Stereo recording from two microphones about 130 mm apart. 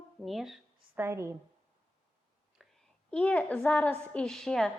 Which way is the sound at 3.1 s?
10° left (ahead or behind).